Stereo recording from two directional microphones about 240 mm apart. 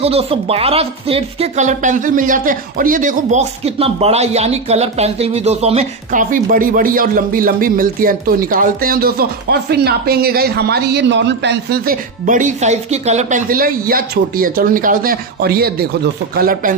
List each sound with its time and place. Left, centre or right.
0.0 s speech: right